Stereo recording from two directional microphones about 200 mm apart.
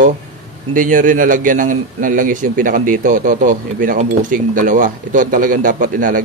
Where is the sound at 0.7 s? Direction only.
40° right (ahead or behind).